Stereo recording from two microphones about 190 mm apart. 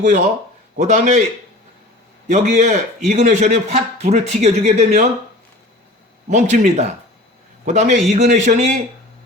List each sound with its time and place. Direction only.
0.8 s a man's voice: 40° right (ahead or behind)
2.2 s a man's voice: 35° right (ahead or behind)
6.2 s a man's voice: 40° right (ahead or behind)